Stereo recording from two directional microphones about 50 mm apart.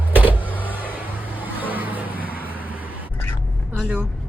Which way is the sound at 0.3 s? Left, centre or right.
Left.